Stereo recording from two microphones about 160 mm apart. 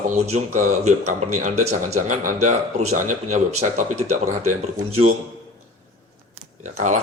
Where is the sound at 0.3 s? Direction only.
50° right (ahead or behind).